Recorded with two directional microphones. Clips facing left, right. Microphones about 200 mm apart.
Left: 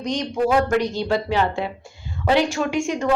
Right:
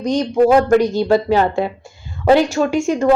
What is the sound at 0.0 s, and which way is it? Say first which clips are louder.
A woman's voice: right 8 dB; 40° right (ahead or behind).